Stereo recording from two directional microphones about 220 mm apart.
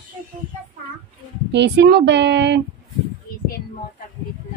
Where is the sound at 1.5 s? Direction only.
50° right (ahead or behind).